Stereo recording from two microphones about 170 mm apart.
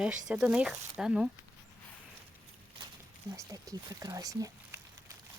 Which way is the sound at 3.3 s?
20° right (ahead or behind).